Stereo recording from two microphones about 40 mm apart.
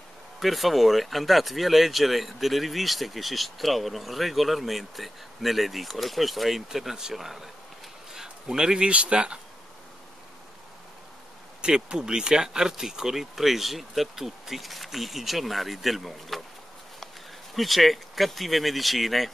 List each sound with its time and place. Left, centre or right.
0.4 s speech: centre; by 9.4 s right
11.6 s speech: centre
17.6 s speech: centre